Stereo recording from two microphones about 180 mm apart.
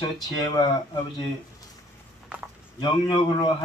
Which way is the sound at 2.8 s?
25° left (ahead or behind).